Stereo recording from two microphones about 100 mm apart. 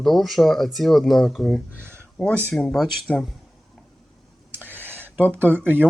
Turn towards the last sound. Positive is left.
turn(degrees=-20)  # may be behind; listen again after turning